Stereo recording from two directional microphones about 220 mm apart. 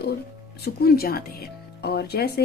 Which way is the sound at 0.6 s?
45° left (ahead or behind).